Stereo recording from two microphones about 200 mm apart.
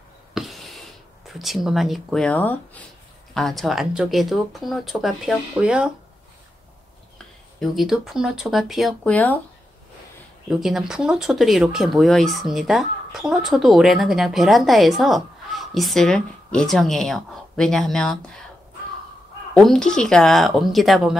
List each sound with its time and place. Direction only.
0.3 s a sound: centre (ahead or behind)
1.4 s speech: centre (ahead or behind)
7.7 s speech: centre (ahead or behind)
10.5 s speech: centre (ahead or behind)
19.5 s speech: centre (ahead or behind)